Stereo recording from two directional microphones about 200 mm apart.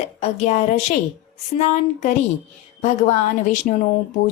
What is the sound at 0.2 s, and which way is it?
Speech, 35° left (ahead or behind).